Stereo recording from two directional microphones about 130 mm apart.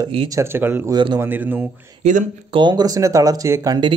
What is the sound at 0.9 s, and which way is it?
Speech, 35° right (ahead or behind).